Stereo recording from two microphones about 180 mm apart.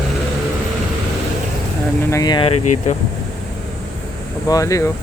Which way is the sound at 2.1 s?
20° left (ahead or behind).